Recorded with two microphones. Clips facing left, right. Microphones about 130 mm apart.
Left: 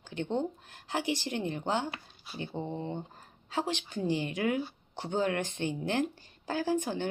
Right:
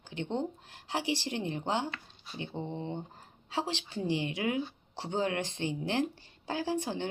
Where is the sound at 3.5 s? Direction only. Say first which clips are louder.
Left 1 dB; 25° right (ahead or behind).